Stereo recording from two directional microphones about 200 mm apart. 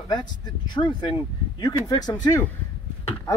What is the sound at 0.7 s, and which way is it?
Speech, 25° left (ahead or behind).